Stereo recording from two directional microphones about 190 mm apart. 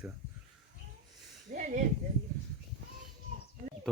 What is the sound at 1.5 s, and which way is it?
Speech, 45° right (ahead or behind).